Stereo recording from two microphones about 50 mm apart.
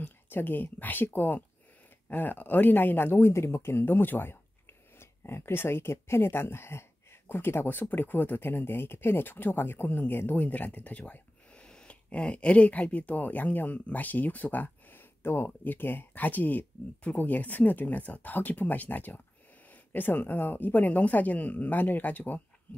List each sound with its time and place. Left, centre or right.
0.0 s speech: left